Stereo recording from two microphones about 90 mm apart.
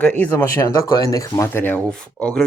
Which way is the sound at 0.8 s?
40° left (ahead or behind).